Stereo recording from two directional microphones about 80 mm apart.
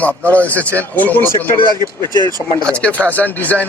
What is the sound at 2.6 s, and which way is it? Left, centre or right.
A man's voice, centre.